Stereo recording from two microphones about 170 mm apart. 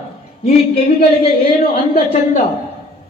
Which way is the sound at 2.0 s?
50° left (ahead or behind).